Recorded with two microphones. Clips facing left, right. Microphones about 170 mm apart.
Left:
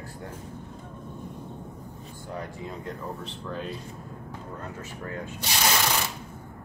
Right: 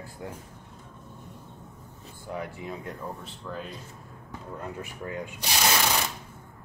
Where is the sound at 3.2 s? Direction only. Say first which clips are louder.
Left 3 dB; 5° right (ahead or behind).